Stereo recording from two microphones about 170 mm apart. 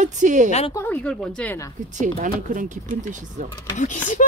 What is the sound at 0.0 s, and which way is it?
Speech, 45° right (ahead or behind).